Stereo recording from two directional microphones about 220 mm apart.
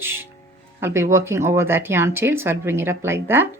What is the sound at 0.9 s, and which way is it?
Speech, 10° right (ahead or behind).